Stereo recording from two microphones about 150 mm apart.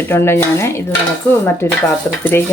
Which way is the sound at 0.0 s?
15° left (ahead or behind).